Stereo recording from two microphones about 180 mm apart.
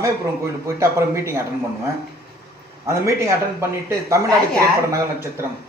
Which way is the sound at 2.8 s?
15° right (ahead or behind).